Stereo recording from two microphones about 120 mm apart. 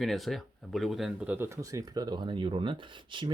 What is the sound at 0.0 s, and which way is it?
Speech, centre (ahead or behind).